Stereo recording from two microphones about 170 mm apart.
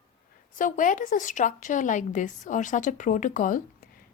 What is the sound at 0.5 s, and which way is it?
A woman's voice, 50° left (ahead or behind).